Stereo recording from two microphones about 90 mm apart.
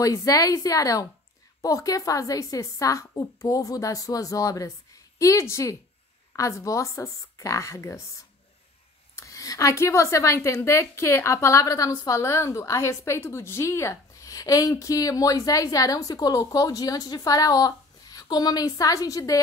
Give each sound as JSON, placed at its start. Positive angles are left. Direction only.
{"t": 0.0, "sound": "speech", "side_deg": 40}
{"t": 9.1, "sound": "speech", "side_deg": 40}